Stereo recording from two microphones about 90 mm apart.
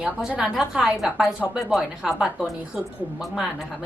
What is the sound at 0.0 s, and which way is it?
A woman's voice, 10° right (ahead or behind).